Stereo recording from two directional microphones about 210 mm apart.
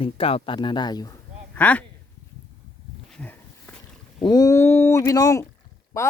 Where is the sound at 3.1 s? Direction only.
5° left (ahead or behind).